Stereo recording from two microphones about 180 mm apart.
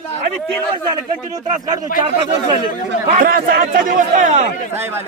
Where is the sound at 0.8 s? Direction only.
25° right (ahead or behind).